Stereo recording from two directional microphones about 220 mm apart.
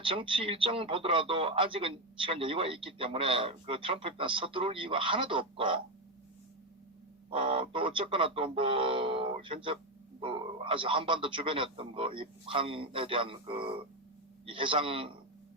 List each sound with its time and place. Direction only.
0.0 s speech: 25° right (ahead or behind)
7.3 s speech: 25° right (ahead or behind)